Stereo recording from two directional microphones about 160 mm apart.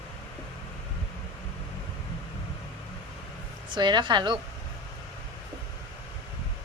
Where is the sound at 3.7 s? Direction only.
30° right (ahead or behind).